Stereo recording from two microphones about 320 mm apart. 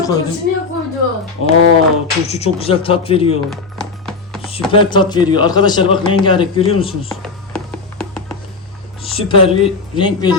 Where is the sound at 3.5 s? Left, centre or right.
Centre.